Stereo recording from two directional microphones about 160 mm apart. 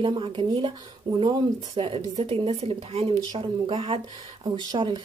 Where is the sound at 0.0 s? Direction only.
30° right (ahead or behind).